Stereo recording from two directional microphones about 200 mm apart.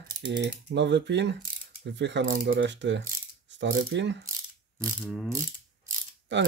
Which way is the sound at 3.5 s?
65° right (ahead or behind).